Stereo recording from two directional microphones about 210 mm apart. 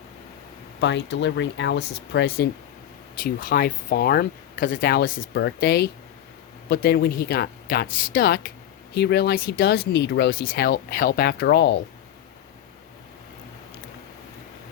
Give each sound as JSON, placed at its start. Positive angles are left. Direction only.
{"t": 0.8, "sound": "speech", "side_deg": 55}